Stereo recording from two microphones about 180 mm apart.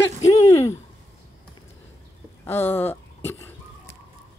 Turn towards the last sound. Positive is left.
turn(degrees=10)  # may be behind; listen again after turning